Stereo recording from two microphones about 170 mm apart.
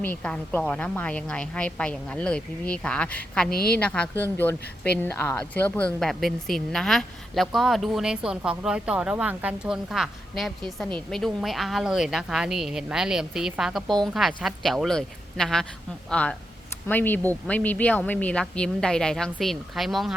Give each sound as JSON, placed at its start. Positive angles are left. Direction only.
{"t": 0.0, "sound": "a woman's voice", "side_deg": 10}
{"t": 3.5, "sound": "a woman's voice", "side_deg": 65}
{"t": 3.8, "sound": "a woman's voice", "side_deg": 5}